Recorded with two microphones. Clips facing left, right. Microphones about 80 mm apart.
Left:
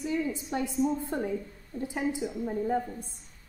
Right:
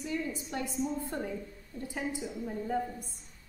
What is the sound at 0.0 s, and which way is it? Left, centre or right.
A woman's voice, left.